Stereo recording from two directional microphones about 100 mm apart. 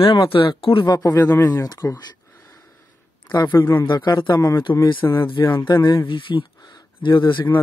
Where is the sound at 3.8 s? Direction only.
50° left (ahead or behind).